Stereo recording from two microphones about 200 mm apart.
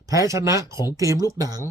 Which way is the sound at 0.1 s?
15° right (ahead or behind).